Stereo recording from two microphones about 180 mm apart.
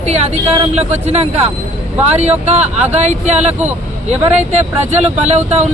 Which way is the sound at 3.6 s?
10° right (ahead or behind).